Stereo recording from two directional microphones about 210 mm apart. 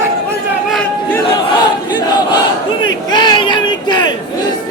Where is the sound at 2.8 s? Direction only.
20° left (ahead or behind).